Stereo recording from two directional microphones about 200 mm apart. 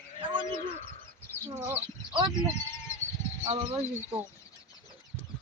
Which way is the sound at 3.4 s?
30° right (ahead or behind).